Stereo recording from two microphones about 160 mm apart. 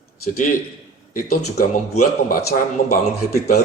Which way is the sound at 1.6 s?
60° left (ahead or behind).